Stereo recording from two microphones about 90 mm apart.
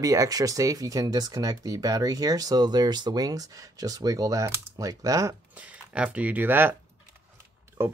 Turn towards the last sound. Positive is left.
turn(degrees=-25)  # may be behind; listen again after turning